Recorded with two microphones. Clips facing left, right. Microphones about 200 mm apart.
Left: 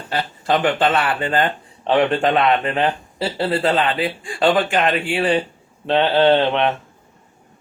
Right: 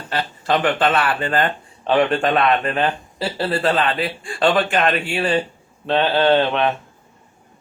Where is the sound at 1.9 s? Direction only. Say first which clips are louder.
Left 1 dB; 20° left (ahead or behind).